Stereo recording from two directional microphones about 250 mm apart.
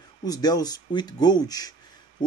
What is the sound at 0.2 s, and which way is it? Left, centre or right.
A man's voice, centre.